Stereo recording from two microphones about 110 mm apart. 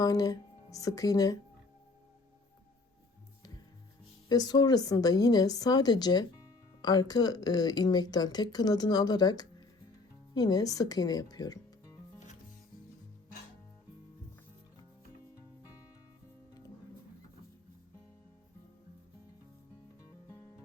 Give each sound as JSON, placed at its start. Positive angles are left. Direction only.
{"t": 0.0, "sound": "speech", "side_deg": 35}
{"t": 4.3, "sound": "speech", "side_deg": 35}
{"t": 20.0, "sound": "music", "side_deg": 30}